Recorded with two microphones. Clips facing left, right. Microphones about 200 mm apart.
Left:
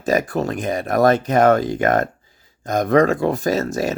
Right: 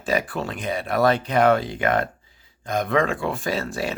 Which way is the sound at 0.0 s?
45° left (ahead or behind).